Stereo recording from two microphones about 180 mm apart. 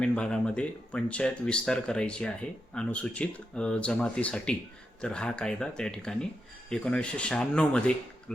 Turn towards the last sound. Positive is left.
turn(degrees=5)  # may be behind; listen again after turning